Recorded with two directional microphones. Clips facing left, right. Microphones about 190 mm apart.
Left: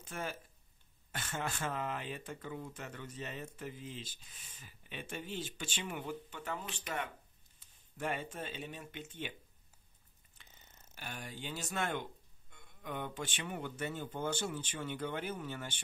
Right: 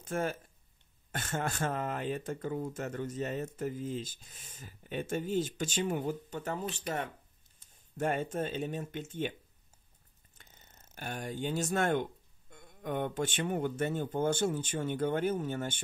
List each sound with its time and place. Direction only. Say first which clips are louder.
0.0 s speech: right 8 dB; 45° right (ahead or behind)
10.4 s purr: right 3 dB; 45° right (ahead or behind)
11.0 s speech: right 9 dB; 45° right (ahead or behind)